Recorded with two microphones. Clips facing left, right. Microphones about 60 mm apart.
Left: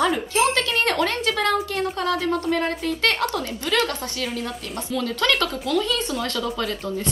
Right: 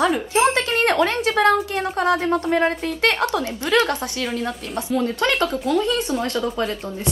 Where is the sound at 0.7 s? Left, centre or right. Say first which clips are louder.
Right 4 dB; right.